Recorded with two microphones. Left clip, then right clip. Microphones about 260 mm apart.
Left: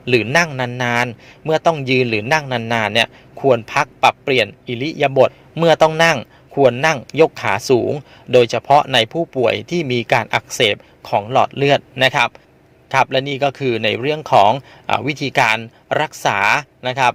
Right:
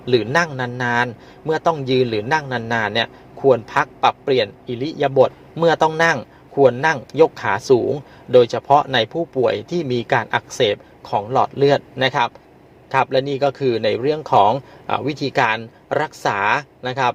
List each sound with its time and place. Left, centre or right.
0.1 s a man's voice: left
5.0 s a man's voice: left